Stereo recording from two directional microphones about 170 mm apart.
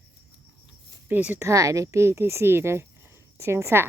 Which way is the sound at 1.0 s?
10° right (ahead or behind).